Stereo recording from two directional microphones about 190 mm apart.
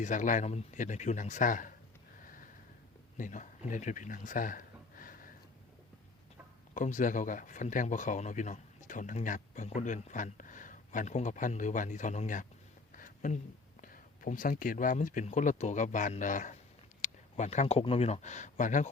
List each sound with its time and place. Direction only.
0.0 s speech: 40° left (ahead or behind)
2.2 s a sound: 45° left (ahead or behind)
3.2 s speech: 45° left (ahead or behind)
6.7 s speech: 40° left (ahead or behind)
13.0 s a sound: 45° left (ahead or behind)
13.8 s speech: 45° left (ahead or behind)